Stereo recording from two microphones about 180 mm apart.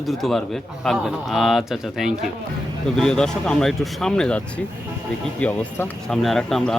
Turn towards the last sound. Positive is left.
turn(degrees=0)  # may be behind; listen again after turning